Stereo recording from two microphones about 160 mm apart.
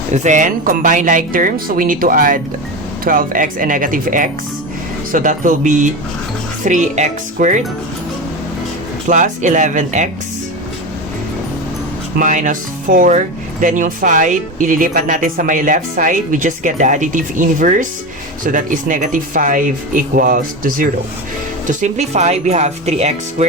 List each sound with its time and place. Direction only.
0.1 s speech: 50° right (ahead or behind)
9.0 s speech: 50° right (ahead or behind)
12.2 s speech: 55° right (ahead or behind)
21.7 s speech: 50° right (ahead or behind)